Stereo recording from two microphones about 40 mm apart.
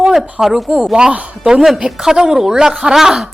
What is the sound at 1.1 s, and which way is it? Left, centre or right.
Speech, right.